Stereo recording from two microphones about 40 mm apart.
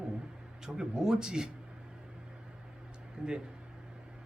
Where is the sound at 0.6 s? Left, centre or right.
Centre.